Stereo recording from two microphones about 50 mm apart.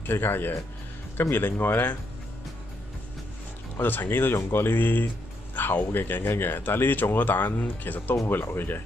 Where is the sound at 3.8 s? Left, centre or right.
Left.